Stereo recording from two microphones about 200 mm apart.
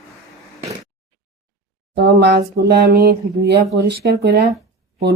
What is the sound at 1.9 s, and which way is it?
Speech, 55° right (ahead or behind).